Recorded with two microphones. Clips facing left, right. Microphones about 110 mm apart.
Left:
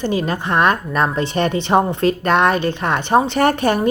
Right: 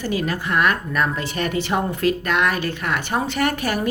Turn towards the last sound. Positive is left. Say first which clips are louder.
# left 6 dB
turn(degrees=30)  # may be behind; listen again after turning